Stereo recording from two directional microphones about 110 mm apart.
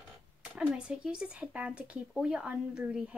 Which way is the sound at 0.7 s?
10° right (ahead or behind).